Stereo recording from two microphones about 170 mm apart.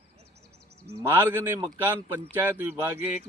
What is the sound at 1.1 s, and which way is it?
Speech, 10° right (ahead or behind).